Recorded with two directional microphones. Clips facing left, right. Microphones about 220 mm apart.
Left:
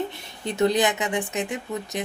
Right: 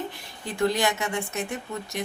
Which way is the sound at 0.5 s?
20° left (ahead or behind).